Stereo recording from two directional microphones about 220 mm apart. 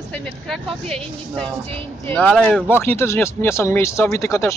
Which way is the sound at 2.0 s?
5° left (ahead or behind).